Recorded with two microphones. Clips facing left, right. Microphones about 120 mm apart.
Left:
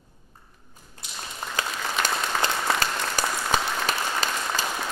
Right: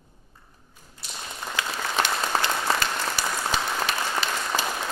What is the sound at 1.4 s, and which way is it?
Applause, 45° left (ahead or behind).